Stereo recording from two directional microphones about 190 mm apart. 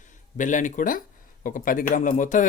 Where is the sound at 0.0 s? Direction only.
40° left (ahead or behind).